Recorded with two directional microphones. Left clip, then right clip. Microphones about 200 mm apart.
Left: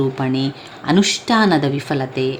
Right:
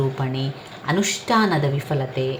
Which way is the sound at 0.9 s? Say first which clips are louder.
Left 5 dB; 40° left (ahead or behind).